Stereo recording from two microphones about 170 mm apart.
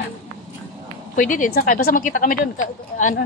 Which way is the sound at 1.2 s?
55° left (ahead or behind).